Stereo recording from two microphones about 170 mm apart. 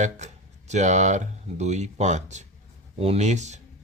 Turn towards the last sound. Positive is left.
turn(degrees=-45)  # may be behind; listen again after turning